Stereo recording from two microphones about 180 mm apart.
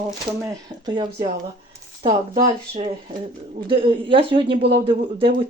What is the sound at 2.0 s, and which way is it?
Speech, 40° right (ahead or behind).